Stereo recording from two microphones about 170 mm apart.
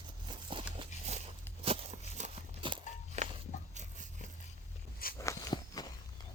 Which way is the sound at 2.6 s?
30° right (ahead or behind).